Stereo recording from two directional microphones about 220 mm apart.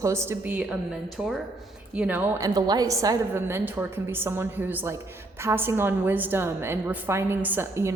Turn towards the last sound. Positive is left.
turn(degrees=-10)  # may be behind; listen again after turning